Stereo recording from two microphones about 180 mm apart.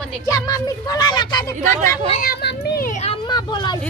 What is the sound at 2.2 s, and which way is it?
Speech, 55° left (ahead or behind).